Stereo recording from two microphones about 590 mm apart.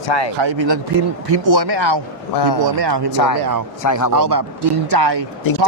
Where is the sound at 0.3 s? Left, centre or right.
Right.